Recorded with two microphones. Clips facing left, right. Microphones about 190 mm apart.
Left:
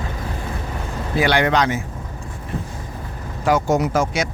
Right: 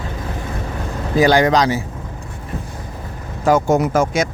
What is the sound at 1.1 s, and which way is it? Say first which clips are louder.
Speech: right 4 dB; 40° right (ahead or behind).